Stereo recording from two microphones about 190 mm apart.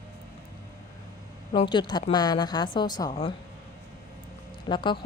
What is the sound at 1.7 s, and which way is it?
A woman's voice, 25° left (ahead or behind).